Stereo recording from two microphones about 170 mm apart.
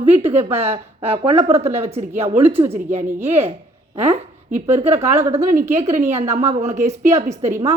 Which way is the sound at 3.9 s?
45° right (ahead or behind).